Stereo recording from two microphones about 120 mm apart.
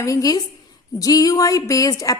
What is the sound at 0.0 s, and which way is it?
A woman's voice, 30° left (ahead or behind).